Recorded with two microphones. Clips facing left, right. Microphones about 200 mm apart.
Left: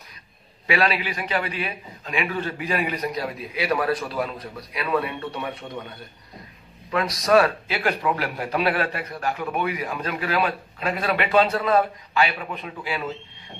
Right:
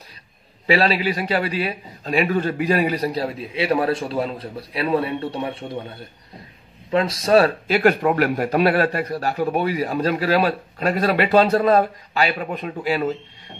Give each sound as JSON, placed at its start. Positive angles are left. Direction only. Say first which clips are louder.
{"t": 0.7, "sound": "speech", "louder": "right 5 dB", "side_deg": -30}